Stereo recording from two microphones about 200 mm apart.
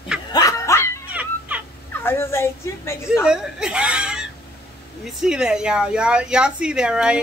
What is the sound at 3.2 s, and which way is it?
Speech, 5° right (ahead or behind).